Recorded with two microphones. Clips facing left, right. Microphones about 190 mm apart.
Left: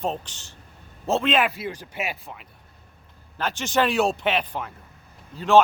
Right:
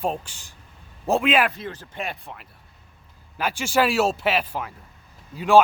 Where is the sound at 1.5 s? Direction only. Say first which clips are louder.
Left 1 dB; 10° left (ahead or behind).